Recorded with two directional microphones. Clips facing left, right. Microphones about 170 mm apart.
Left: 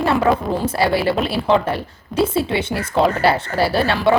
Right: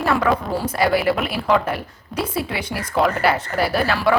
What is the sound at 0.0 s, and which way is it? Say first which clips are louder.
A woman's voice: left 2 dB; 25° left (ahead or behind).